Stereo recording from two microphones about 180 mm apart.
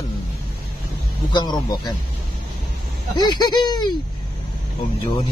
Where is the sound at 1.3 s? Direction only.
25° left (ahead or behind).